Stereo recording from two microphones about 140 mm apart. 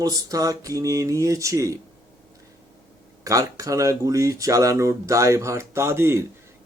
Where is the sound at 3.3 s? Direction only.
25° right (ahead or behind).